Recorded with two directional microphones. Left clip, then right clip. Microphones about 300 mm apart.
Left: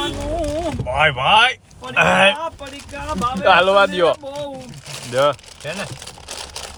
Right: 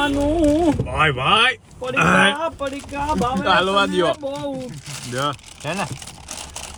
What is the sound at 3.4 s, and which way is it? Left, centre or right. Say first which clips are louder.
Speech: left 6 dB; left.